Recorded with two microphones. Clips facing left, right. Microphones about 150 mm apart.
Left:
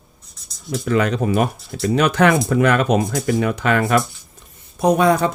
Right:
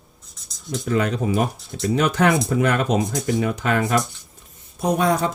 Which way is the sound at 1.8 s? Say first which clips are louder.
Left 3 dB; 80° left.